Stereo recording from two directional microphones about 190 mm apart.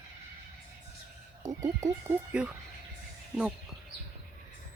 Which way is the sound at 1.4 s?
15° right (ahead or behind).